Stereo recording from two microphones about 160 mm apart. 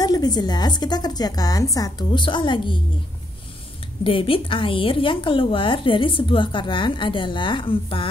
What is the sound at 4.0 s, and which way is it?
A woman's voice, 35° left (ahead or behind).